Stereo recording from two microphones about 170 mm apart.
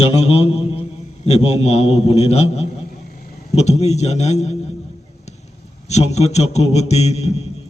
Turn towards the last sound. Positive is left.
turn(degrees=40)  # may be behind; listen again after turning